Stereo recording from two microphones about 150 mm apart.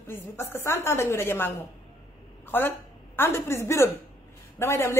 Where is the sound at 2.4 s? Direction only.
15° left (ahead or behind).